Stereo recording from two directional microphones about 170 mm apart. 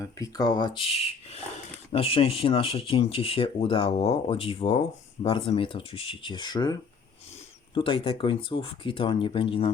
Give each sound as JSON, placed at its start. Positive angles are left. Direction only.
{"t": 0.0, "sound": "speech", "side_deg": 20}